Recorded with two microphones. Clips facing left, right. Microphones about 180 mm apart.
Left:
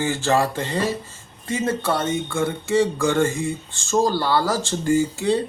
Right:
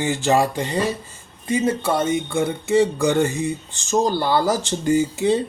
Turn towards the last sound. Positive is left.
turn(degrees=-20)  # may be behind; listen again after turning